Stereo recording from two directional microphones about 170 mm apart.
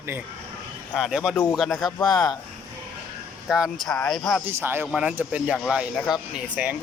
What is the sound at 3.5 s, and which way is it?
Speech, centre (ahead or behind).